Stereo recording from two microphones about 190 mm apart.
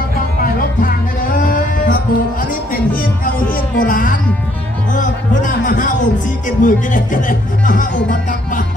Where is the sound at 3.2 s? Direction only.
50° left (ahead or behind).